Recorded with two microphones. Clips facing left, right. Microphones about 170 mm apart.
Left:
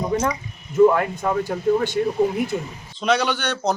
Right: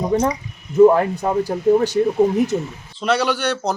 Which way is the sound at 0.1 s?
35° right (ahead or behind).